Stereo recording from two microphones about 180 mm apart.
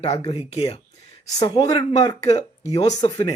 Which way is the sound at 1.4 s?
20° left (ahead or behind).